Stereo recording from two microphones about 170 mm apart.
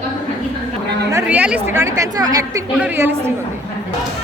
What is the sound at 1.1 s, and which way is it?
Speech, 10° right (ahead or behind).